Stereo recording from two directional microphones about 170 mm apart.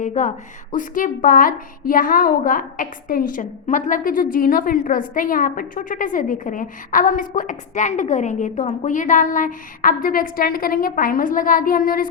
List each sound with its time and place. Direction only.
0.0 s a woman's voice: 45° left (ahead or behind)